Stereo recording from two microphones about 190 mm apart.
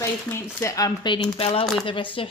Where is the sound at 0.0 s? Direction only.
15° left (ahead or behind).